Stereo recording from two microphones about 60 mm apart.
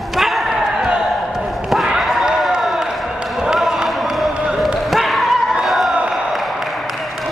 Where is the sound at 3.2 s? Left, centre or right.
Centre.